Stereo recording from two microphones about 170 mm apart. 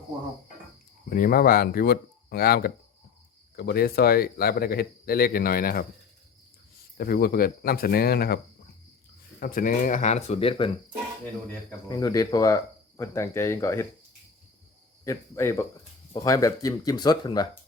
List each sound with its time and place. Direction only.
1.1 s speech: 55° left (ahead or behind)
6.9 s speech: 60° left (ahead or behind)
9.4 s speech: 55° left (ahead or behind); by 10.7 s 30° left (ahead or behind)
11.4 s speech: 20° left (ahead or behind)
15.0 s speech: 20° left (ahead or behind)